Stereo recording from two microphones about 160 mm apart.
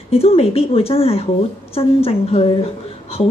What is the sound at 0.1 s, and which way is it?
A woman's voice, 40° left (ahead or behind).